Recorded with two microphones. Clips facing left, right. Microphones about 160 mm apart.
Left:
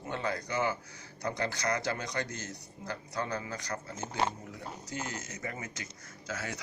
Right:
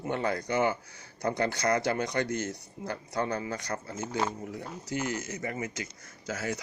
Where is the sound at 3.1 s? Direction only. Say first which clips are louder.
Right 5 dB; 35° right (ahead or behind).